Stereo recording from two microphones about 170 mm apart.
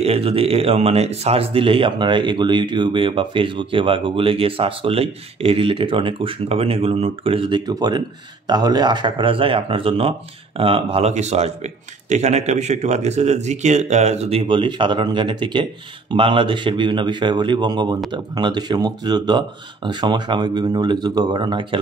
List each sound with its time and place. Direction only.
0.0 s speech: 35° right (ahead or behind)